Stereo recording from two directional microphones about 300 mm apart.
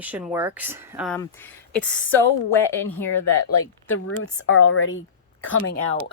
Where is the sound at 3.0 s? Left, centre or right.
Left.